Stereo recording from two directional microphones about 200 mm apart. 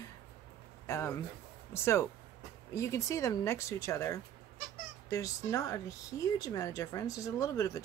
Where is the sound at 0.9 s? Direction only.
10° left (ahead or behind).